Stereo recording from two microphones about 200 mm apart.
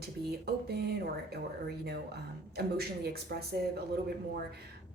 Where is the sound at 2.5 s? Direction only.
55° right (ahead or behind).